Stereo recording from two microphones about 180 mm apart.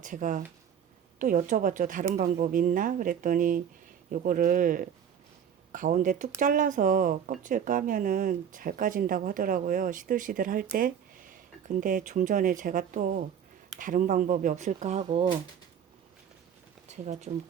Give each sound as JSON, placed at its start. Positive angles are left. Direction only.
{"t": 0.0, "sound": "speech", "side_deg": -45}
{"t": 16.9, "sound": "speech", "side_deg": -40}